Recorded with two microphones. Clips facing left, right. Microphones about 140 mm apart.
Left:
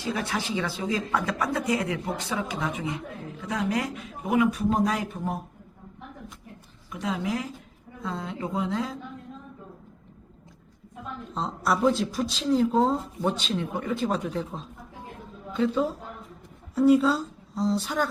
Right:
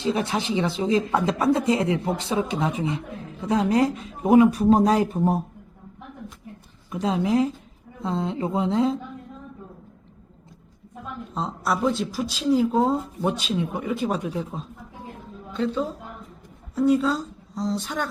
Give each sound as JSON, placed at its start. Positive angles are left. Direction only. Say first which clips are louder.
{"t": 0.0, "sound": "speech", "louder": "right 5 dB", "side_deg": -25}
{"t": 6.9, "sound": "speech", "louder": "right 7 dB", "side_deg": -30}
{"t": 11.3, "sound": "a woman's voice", "louder": "even", "side_deg": 0}
{"t": 15.5, "sound": "a woman's voice", "louder": "left 1 dB", "side_deg": 5}